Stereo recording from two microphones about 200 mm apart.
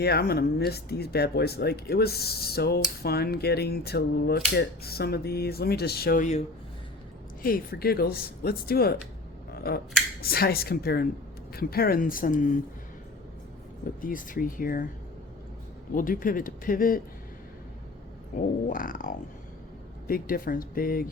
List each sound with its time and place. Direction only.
0.0 s cap gun: 50° left (ahead or behind)
7.4 s cap gun: 50° left (ahead or behind)
14.0 s cap gun: 45° left (ahead or behind)
16.0 s cap gun: 45° left (ahead or behind)
18.3 s cap gun: 45° left (ahead or behind)